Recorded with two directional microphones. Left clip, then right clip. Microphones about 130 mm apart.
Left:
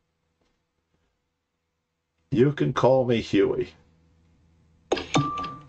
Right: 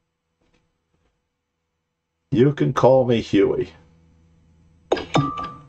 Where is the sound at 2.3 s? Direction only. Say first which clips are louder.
Right 4 dB; centre (ahead or behind).